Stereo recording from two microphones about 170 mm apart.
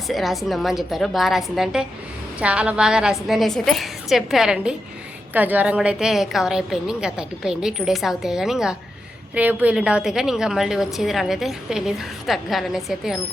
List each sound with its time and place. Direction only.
0.1 s a woman's voice: centre (ahead or behind)